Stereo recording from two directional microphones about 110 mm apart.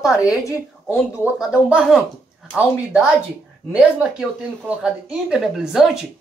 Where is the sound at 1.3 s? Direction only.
5° right (ahead or behind).